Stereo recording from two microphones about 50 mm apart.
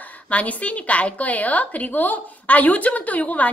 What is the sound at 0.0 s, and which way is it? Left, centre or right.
A woman's voice, left.